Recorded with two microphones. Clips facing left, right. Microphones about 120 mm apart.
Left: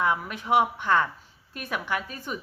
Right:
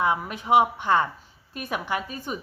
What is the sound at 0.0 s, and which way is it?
Speech, 20° right (ahead or behind).